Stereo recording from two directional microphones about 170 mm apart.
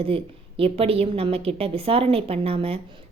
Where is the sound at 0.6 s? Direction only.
35° right (ahead or behind).